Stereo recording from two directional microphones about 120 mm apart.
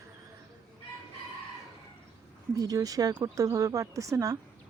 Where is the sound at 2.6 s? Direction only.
30° right (ahead or behind).